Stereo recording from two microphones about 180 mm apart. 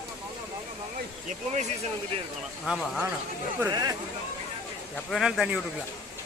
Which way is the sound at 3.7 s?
20° right (ahead or behind).